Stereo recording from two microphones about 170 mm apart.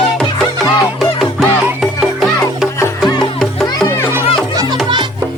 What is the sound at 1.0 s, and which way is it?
Music, centre (ahead or behind).